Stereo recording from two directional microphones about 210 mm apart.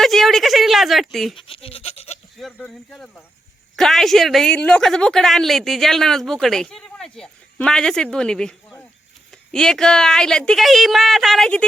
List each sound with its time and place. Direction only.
0.0 s a woman's voice: centre (ahead or behind)
1.4 s goat: 25° left (ahead or behind)
2.4 s a woman's voice: 5° left (ahead or behind)